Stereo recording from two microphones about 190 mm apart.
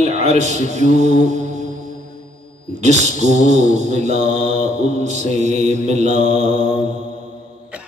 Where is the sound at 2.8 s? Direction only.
35° right (ahead or behind).